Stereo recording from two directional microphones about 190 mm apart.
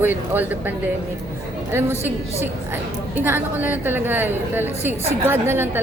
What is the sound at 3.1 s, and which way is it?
A woman's voice, 10° right (ahead or behind).